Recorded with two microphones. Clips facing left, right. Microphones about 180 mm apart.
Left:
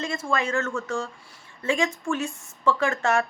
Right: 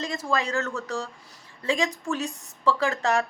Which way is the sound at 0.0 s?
35° right (ahead or behind).